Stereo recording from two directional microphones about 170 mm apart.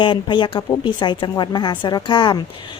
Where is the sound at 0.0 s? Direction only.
30° left (ahead or behind).